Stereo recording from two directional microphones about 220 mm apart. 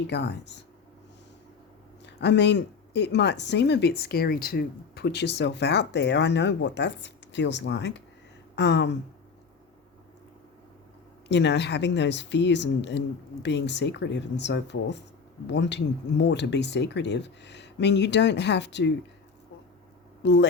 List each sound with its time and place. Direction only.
0.1 s speech: 50° left (ahead or behind)
2.0 s speech: 50° left (ahead or behind)
11.3 s speech: 50° left (ahead or behind)
20.2 s speech: 50° left (ahead or behind)